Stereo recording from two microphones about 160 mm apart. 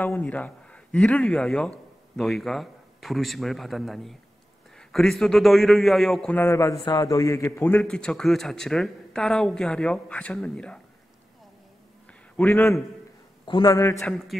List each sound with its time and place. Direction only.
0.0 s a man's voice: 10° left (ahead or behind)
12.4 s a man's voice: 10° left (ahead or behind)
13.5 s a man's voice: 25° left (ahead or behind)
14.0 s a man's voice: centre (ahead or behind)